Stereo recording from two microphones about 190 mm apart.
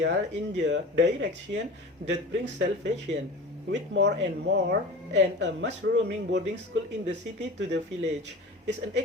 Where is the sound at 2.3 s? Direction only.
70° right (ahead or behind).